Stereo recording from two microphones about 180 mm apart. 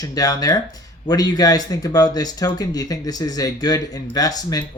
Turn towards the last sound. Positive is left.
turn(degrees=20)  # may be behind; listen again after turning